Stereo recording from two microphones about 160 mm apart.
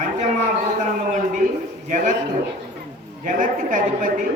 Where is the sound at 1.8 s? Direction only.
55° right (ahead or behind).